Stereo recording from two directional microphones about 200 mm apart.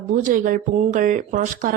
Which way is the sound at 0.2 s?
40° right (ahead or behind).